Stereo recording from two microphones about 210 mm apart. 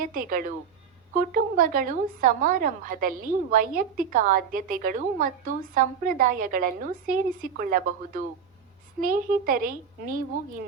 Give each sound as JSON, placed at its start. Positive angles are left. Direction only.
{"t": 0.0, "sound": "a woman's voice", "side_deg": -45}